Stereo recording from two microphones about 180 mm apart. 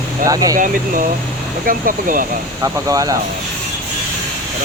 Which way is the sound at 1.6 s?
50° right (ahead or behind).